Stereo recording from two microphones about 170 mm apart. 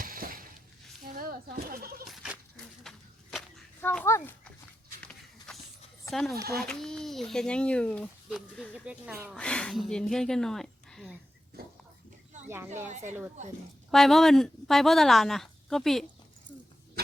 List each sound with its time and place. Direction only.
0.0 s a sound: 55° right (ahead or behind)
1.7 s speech: 60° right (ahead or behind)
2.0 s goat: 5° right (ahead or behind)
2.8 s a sound: centre (ahead or behind)
3.8 s a child's voice: 10° left (ahead or behind)
5.5 s a sound: 5° left (ahead or behind)
6.1 s speech: centre (ahead or behind)
9.3 s speech: 5° left (ahead or behind)
12.5 s speech: 15° right (ahead or behind)
12.9 s speech: 45° right (ahead or behind)
13.9 s speech: centre (ahead or behind)